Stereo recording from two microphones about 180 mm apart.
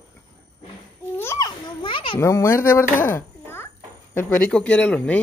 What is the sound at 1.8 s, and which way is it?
Speech, 25° left (ahead or behind).